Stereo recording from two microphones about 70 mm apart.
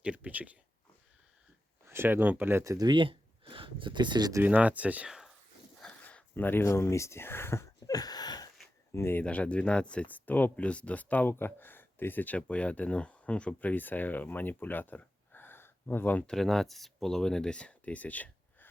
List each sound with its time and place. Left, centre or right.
0.0 s speech: right
1.9 s speech: right
2.6 s speech: right
3.9 s speech: right
4.4 s speech: right
5.0 s a sound: centre
5.8 s a sound: centre
6.3 s speech: left
7.9 s a sound: left
8.9 s speech: left
9.2 s speech: centre
16.2 s speech: centre; by 18.7 s left